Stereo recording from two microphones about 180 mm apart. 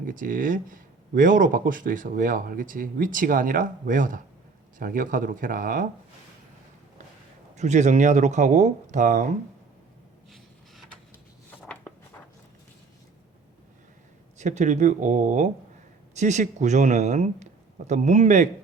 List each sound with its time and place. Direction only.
0.0 s speech: 50° right (ahead or behind)
7.5 s speech: 40° right (ahead or behind)
10.3 s vehicle: centre (ahead or behind)
11.6 s a sound: 10° left (ahead or behind)
14.3 s speech: 40° right (ahead or behind)